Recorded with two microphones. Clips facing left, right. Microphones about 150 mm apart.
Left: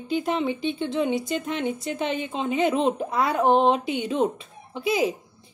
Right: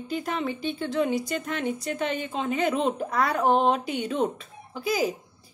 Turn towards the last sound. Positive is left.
turn(degrees=25)  # may be behind; listen again after turning